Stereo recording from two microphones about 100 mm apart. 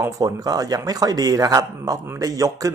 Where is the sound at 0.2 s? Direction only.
40° right (ahead or behind).